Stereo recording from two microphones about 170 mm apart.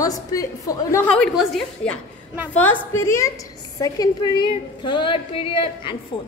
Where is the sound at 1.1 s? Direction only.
Centre (ahead or behind); by 5.9 s 30° left (ahead or behind).